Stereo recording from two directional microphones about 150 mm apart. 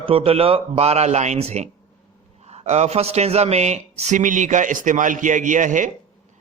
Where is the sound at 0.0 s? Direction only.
40° right (ahead or behind).